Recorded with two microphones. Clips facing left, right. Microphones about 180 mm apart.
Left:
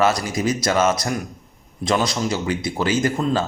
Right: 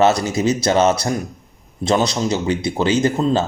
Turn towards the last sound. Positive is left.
turn(degrees=-25)  # may be behind; listen again after turning